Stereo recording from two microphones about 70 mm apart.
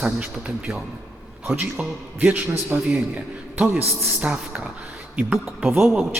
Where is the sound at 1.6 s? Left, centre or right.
Right.